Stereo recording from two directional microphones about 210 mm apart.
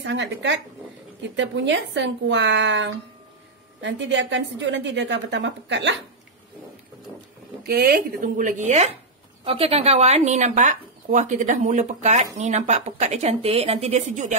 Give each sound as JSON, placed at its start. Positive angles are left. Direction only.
{"t": 0.0, "sound": "a woman's voice", "side_deg": -60}
{"t": 7.6, "sound": "speech", "side_deg": -45}